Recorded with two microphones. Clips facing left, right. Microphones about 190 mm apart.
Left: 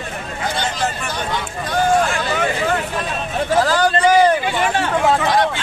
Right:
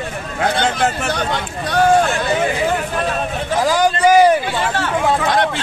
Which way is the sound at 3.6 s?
10° right (ahead or behind).